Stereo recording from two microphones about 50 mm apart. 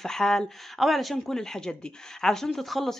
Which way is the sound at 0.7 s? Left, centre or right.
Centre.